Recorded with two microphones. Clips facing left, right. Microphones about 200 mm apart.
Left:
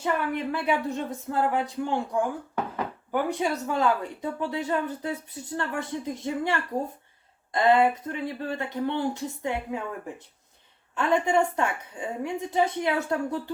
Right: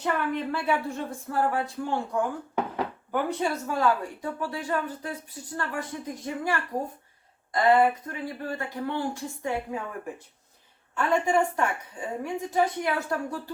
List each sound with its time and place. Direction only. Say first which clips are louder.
0.0 s speech: left 1 dB; 15° left (ahead or behind)
3.1 s speech: left 2 dB; 15° left (ahead or behind)
10.9 s speech: left 1 dB; 20° left (ahead or behind)